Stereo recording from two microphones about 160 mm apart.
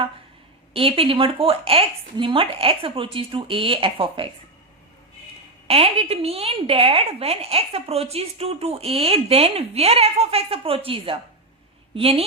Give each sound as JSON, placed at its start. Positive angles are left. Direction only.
{"t": 0.7, "sound": "a woman's voice", "side_deg": -35}
{"t": 5.6, "sound": "a woman's voice", "side_deg": -35}